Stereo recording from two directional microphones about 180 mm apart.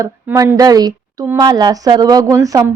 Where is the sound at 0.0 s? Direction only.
20° right (ahead or behind).